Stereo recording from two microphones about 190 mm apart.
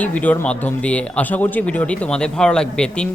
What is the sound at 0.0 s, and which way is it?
Speech, 10° left (ahead or behind).